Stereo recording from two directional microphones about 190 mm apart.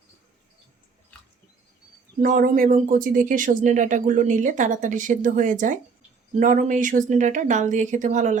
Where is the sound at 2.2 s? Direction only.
45° right (ahead or behind).